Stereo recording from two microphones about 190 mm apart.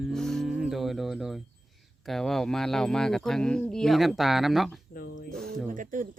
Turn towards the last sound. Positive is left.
turn(degrees=-45)  # may be behind; listen again after turning